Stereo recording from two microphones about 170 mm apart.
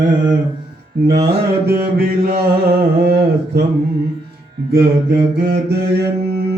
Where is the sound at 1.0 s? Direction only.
25° right (ahead or behind).